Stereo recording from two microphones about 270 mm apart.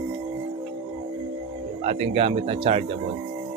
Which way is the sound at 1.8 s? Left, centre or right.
Right.